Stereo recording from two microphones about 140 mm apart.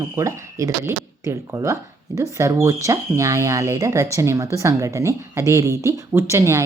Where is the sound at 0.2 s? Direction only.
20° right (ahead or behind).